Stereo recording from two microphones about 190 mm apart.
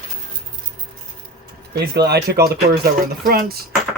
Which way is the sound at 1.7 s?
60° right (ahead or behind).